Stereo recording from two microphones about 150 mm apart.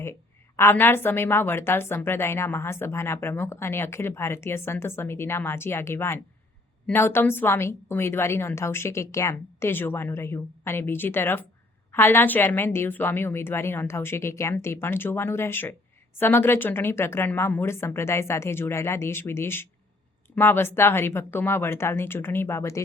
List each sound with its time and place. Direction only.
0.0 s a woman's voice: 15° left (ahead or behind)